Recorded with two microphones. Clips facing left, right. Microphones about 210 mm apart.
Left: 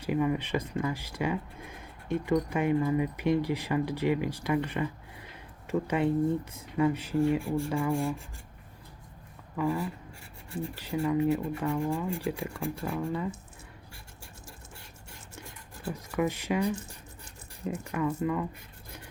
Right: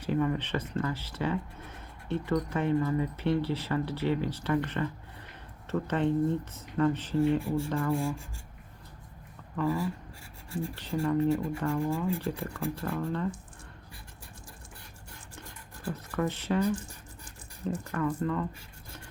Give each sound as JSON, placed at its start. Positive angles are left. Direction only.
{"t": 0.0, "sound": "speech", "side_deg": 10}
{"t": 9.6, "sound": "speech", "side_deg": 15}
{"t": 12.2, "sound": "speech", "side_deg": 10}
{"t": 15.4, "sound": "scratch", "side_deg": 10}
{"t": 17.8, "sound": "speech", "side_deg": 10}